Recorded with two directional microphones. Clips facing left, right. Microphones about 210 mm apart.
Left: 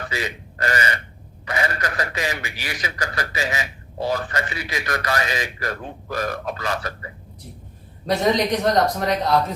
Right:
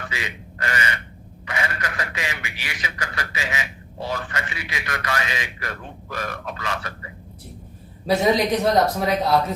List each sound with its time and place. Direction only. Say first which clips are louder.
0.1 s a man's voice: left 5 dB; 40° left (ahead or behind)
8.0 s speech: right 1 dB; 5° right (ahead or behind)